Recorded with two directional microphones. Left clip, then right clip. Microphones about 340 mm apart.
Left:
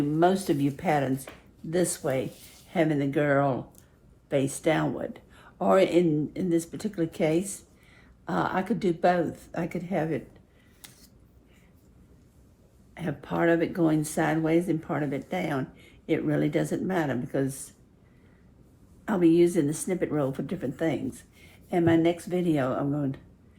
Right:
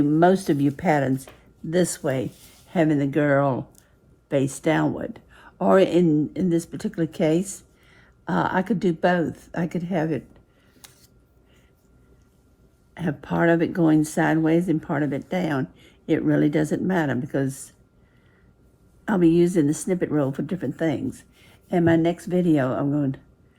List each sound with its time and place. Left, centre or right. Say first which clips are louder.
0.1 s speech: right 3 dB; right
13.0 s speech: right 4 dB; right
19.0 s speech: right 2 dB; right